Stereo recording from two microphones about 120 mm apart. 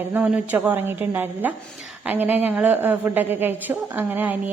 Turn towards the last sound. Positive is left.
turn(degrees=-15)  # may be behind; listen again after turning